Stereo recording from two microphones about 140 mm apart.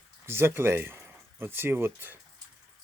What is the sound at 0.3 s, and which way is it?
Speech, 15° right (ahead or behind).